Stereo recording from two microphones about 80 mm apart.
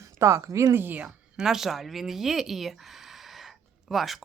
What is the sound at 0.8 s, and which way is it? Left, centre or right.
Speech, right.